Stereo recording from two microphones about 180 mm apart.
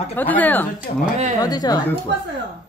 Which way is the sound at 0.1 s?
10° left (ahead or behind).